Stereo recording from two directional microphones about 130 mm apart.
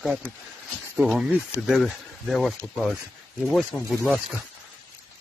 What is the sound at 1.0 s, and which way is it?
Speech, centre (ahead or behind).